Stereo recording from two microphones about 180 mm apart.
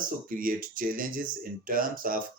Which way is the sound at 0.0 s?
50° right (ahead or behind).